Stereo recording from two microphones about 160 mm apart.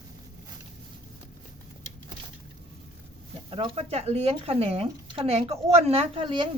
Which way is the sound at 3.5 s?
35° right (ahead or behind).